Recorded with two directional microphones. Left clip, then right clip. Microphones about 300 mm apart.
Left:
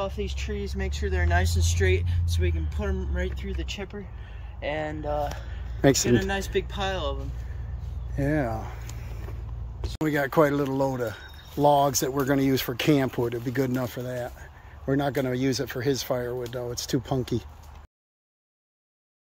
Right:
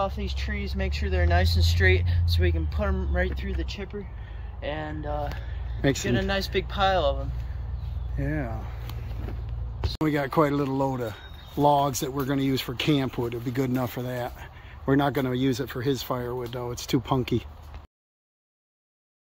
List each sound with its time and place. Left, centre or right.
0.0 s speech: centre
4.6 s speech: left; by 6.0 s centre
6.0 s speech: centre
8.2 s speech: centre
9.9 s speech: centre